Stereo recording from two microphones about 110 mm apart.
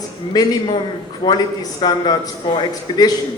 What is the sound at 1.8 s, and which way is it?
A woman's voice, 40° left (ahead or behind).